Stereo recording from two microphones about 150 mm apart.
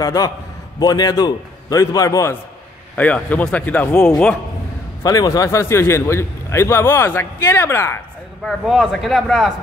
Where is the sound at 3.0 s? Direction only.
10° left (ahead or behind).